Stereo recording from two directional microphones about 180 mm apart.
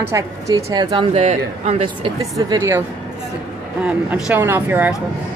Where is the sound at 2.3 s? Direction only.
20° right (ahead or behind).